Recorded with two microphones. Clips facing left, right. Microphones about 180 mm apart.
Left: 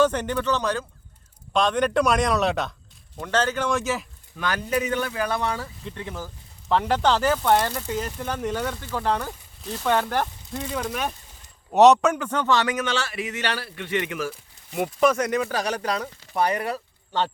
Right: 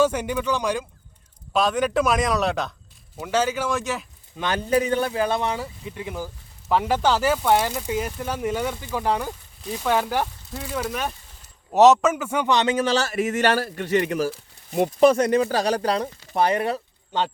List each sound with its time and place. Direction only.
0.0 s a man's voice: 10° right (ahead or behind)
4.4 s speech: 25° right (ahead or behind)
12.7 s speech: 35° right (ahead or behind); by 17.3 s 15° right (ahead or behind)